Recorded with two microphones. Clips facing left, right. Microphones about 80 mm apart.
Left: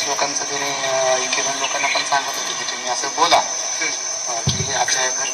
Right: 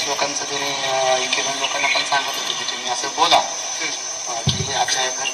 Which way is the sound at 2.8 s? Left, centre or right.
Left.